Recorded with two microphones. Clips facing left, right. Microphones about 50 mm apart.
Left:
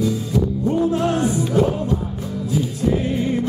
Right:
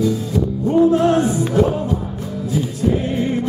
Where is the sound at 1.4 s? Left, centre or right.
Centre.